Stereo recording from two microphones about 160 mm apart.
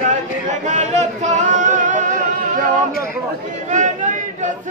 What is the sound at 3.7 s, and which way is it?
Chatter, 50° right (ahead or behind).